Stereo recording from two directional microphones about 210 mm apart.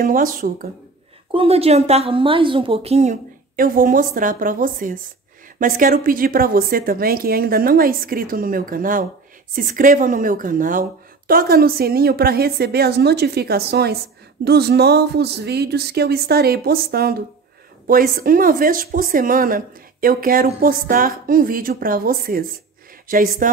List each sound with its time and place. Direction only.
0.0 s speech: 40° right (ahead or behind)
1.3 s a woman's voice: 25° right (ahead or behind)